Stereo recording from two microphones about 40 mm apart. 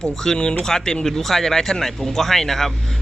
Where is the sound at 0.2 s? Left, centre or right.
Centre.